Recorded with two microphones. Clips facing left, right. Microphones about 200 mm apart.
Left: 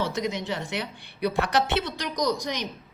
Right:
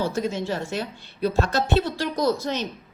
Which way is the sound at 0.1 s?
15° left (ahead or behind).